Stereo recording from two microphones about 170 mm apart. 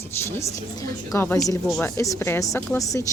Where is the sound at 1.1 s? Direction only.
15° left (ahead or behind).